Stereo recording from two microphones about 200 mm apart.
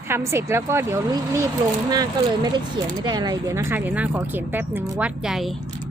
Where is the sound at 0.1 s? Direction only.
15° right (ahead or behind).